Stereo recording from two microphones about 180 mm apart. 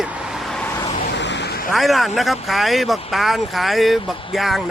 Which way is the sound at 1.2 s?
75° left (ahead or behind).